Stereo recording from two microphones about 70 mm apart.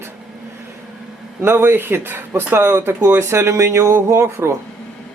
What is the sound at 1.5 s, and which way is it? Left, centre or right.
Speech, right.